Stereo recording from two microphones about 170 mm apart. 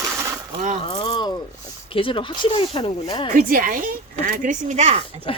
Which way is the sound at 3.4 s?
55° right (ahead or behind).